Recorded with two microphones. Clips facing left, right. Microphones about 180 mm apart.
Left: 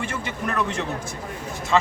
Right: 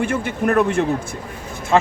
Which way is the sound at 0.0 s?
55° right (ahead or behind).